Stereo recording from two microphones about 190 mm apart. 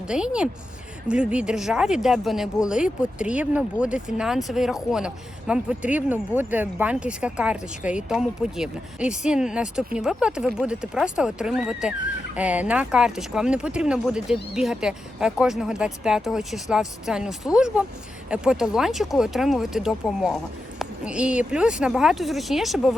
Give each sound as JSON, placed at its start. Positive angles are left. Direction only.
{"t": 0.1, "sound": "speech", "side_deg": -5}